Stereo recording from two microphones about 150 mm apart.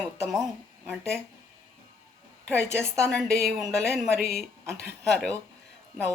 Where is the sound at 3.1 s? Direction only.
5° left (ahead or behind).